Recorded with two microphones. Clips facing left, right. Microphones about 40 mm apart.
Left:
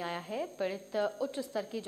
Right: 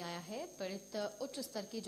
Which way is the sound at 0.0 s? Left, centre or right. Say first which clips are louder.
Left 8 dB; left.